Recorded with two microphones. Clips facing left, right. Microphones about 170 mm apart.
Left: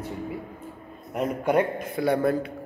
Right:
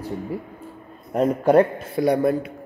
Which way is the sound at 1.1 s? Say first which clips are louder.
Right 7 dB; 30° right (ahead or behind).